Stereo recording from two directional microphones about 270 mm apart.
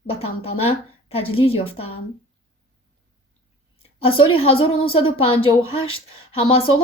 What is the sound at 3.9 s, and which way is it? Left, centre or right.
Speech, left.